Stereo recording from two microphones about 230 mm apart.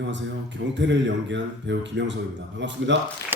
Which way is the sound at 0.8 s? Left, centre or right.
Right.